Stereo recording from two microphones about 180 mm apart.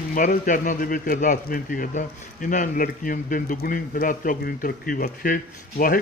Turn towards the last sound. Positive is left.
turn(degrees=50)  # may be behind; listen again after turning